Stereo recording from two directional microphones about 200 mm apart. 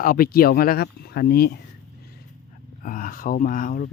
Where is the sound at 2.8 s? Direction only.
40° left (ahead or behind).